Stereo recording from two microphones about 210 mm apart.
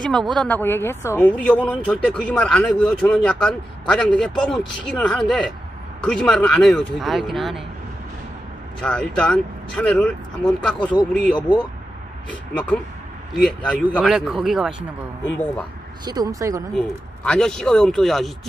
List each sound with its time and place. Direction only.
0.0 s speech: centre (ahead or behind)
8.8 s speech: 5° left (ahead or behind)
11.3 s speech: 20° left (ahead or behind)
12.3 s speech: 5° left (ahead or behind)
16.1 s speech: 15° right (ahead or behind)
16.7 s speech: 5° left (ahead or behind)